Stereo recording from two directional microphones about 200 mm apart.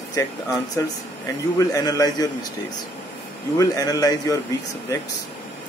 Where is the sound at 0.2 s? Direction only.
15° left (ahead or behind).